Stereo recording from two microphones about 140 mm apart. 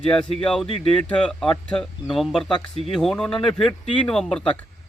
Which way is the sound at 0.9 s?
5° left (ahead or behind).